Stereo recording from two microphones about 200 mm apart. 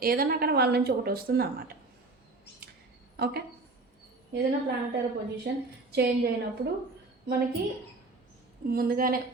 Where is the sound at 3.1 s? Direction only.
50° right (ahead or behind).